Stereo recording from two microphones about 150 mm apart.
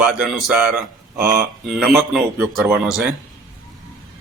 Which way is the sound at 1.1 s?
20° right (ahead or behind).